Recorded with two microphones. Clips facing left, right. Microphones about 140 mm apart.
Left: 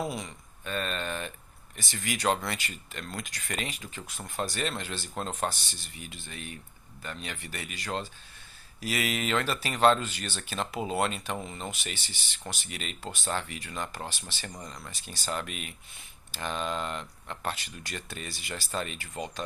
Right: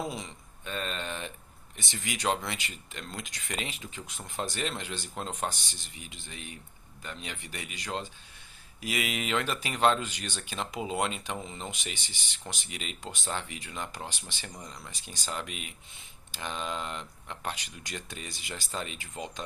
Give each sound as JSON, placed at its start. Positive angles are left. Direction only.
{"t": 0.1, "sound": "speech", "side_deg": -25}